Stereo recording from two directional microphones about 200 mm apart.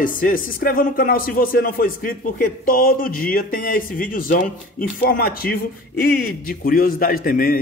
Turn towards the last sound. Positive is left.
turn(degrees=45)  # may be behind; listen again after turning